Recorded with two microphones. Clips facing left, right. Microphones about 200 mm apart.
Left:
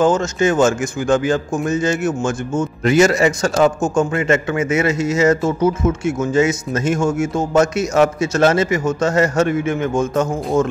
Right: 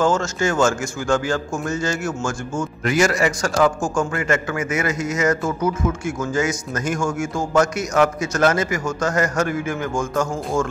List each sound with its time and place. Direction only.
0.0 s a man's voice: 20° left (ahead or behind)